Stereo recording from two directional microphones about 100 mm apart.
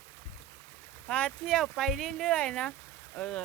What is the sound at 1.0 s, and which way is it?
Speech, 10° left (ahead or behind).